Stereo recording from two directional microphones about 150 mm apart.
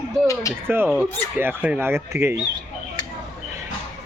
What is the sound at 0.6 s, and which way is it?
Speech, 15° right (ahead or behind).